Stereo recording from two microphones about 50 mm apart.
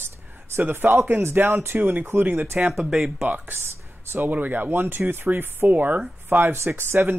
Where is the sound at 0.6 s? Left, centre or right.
Right.